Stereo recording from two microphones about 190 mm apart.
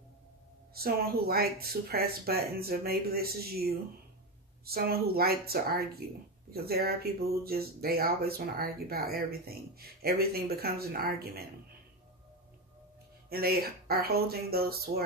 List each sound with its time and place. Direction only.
0.7 s speech: 50° right (ahead or behind)
13.3 s speech: 55° right (ahead or behind)